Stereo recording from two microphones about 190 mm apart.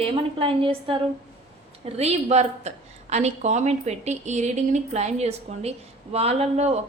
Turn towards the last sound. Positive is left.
turn(degrees=-35)  # may be behind; listen again after turning